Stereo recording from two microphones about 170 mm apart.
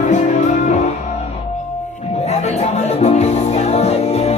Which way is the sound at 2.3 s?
40° left (ahead or behind).